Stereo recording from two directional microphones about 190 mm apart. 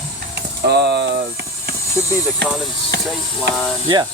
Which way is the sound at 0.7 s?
60° right (ahead or behind).